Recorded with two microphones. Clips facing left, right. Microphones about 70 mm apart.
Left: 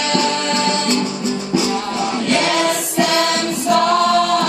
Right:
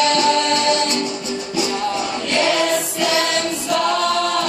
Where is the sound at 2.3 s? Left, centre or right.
Left.